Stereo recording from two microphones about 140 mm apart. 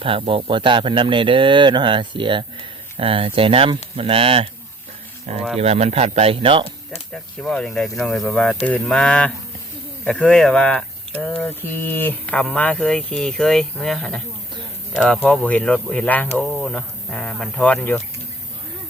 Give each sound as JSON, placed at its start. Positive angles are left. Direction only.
{"t": 0.0, "sound": "speech", "side_deg": -40}
{"t": 5.5, "sound": "speech", "side_deg": -50}
{"t": 7.1, "sound": "speech", "side_deg": 5}